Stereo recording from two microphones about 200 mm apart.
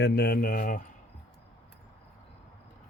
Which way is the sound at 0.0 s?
50° left (ahead or behind).